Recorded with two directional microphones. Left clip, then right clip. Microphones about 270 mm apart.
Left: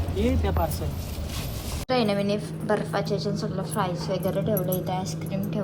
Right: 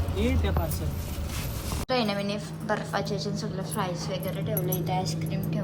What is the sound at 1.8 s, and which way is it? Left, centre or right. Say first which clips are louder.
Speech: left 4 dB; centre.